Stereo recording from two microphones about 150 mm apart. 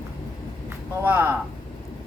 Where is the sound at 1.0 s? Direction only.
15° right (ahead or behind).